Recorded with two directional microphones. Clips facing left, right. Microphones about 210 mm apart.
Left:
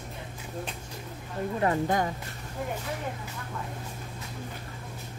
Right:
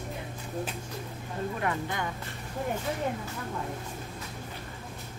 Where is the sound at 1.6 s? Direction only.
40° left (ahead or behind).